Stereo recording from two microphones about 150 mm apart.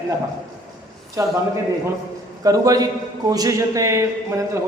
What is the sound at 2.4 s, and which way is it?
A man's voice, 25° right (ahead or behind).